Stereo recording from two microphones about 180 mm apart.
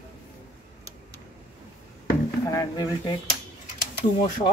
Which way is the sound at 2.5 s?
20° left (ahead or behind).